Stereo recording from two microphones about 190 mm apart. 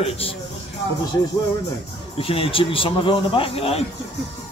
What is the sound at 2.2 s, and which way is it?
Speech, 30° left (ahead or behind).